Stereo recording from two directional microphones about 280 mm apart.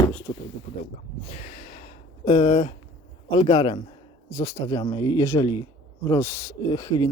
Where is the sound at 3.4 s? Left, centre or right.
Centre.